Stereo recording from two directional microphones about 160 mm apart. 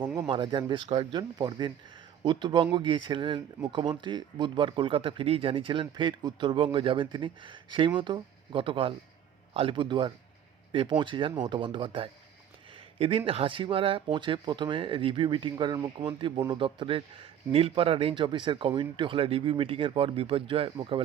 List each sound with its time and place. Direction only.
0.3 s speech: 30° right (ahead or behind)